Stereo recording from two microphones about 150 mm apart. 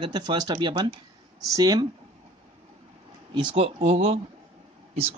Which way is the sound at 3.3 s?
35° right (ahead or behind).